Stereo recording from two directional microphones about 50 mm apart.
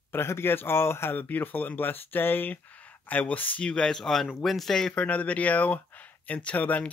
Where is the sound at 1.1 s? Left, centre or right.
Left.